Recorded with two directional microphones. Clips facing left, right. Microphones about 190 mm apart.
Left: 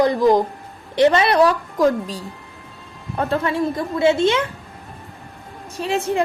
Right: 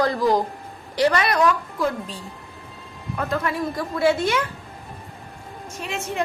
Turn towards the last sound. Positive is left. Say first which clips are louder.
# left 8 dB
turn(degrees=30)  # may be behind; listen again after turning